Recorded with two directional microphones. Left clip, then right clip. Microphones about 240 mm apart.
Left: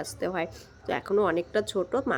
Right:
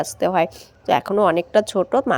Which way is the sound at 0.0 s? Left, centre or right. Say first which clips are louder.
Right 12 dB; right.